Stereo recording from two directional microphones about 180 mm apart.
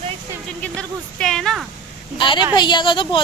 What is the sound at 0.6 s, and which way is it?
Speech, 5° left (ahead or behind).